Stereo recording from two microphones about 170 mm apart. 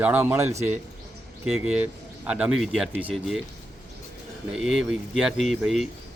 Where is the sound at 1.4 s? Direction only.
5° right (ahead or behind).